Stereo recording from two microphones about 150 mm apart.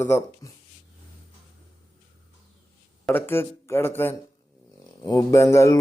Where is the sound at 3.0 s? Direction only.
15° left (ahead or behind).